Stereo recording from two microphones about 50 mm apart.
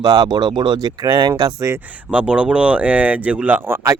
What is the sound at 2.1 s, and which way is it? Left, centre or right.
Speech, right.